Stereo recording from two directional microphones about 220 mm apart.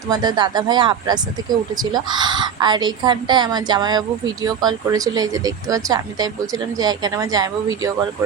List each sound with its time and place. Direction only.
0.1 s a woman's voice: 20° right (ahead or behind)